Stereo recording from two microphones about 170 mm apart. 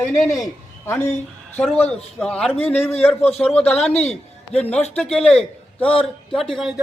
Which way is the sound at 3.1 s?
35° left (ahead or behind).